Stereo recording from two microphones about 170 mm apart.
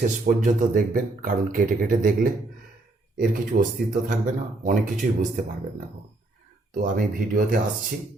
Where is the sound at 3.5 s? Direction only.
55° right (ahead or behind).